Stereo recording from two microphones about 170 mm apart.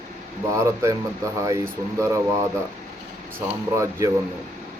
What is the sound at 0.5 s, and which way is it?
Speech, 15° right (ahead or behind).